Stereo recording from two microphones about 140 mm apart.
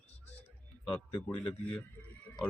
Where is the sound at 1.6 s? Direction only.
10° left (ahead or behind).